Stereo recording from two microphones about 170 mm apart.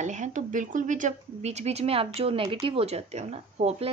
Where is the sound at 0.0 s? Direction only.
45° right (ahead or behind).